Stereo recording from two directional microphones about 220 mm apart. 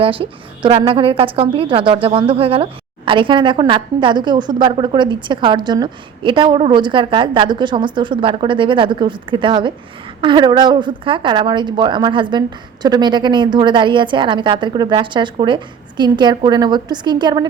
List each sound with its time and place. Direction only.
0.0 s a woman's voice: 25° right (ahead or behind)